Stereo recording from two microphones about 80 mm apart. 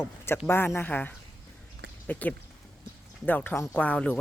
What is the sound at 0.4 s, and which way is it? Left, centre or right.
Speech, left.